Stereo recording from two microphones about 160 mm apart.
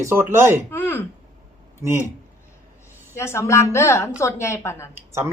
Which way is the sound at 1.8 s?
15° right (ahead or behind).